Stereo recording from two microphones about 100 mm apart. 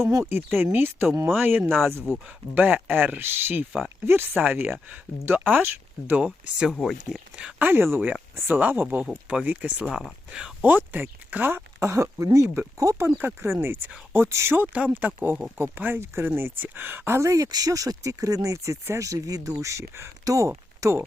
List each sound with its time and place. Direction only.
0.0 s speech: 30° right (ahead or behind); by 7.7 s 10° right (ahead or behind)
7.7 s speech: 20° right (ahead or behind); by 10.7 s 5° right (ahead or behind)
10.7 s speech: 20° right (ahead or behind)